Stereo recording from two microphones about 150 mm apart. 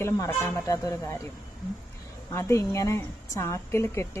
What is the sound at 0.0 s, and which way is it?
A woman's voice, 20° left (ahead or behind).